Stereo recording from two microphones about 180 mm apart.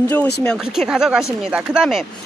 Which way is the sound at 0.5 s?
5° right (ahead or behind).